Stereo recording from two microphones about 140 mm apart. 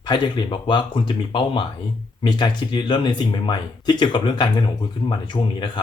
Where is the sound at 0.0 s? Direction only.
30° left (ahead or behind).